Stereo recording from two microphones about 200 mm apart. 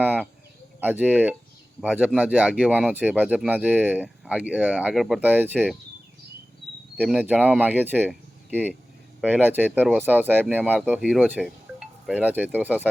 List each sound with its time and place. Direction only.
0.0 s a sound: 10° right (ahead or behind)
0.8 s speech: 10° right (ahead or behind)
6.9 s speech: 5° right (ahead or behind)